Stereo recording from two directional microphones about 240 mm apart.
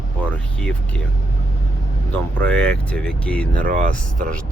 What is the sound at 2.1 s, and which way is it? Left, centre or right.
Speech, centre.